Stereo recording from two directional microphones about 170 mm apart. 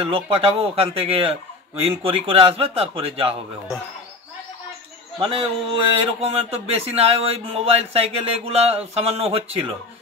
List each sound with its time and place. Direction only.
0.0 s speech: 35° right (ahead or behind)
5.2 s speech: 30° right (ahead or behind)